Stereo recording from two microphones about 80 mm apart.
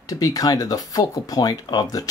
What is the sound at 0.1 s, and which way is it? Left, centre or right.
Speech, left.